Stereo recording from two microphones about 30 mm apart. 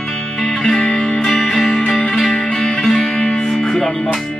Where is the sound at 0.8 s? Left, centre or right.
Left.